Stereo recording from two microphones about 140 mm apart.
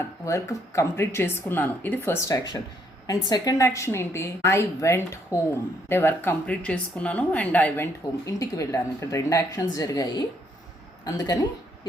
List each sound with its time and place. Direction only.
0.3 s a woman's voice: 20° left (ahead or behind)
8.3 s a woman's voice: 20° left (ahead or behind)